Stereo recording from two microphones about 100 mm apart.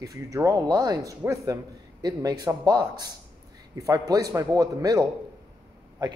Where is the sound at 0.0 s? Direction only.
35° right (ahead or behind).